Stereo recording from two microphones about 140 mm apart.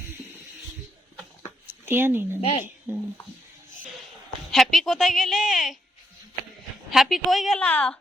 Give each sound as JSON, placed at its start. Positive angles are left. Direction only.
{"t": 1.6, "sound": "a sound", "side_deg": -15}
{"t": 2.4, "sound": "a woman's voice", "side_deg": 40}
{"t": 2.9, "sound": "speech", "side_deg": -10}
{"t": 4.5, "sound": "a woman's voice", "side_deg": 0}
{"t": 6.9, "sound": "a woman's voice", "side_deg": 0}